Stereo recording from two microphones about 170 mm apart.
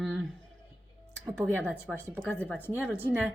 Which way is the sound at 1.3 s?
5° left (ahead or behind).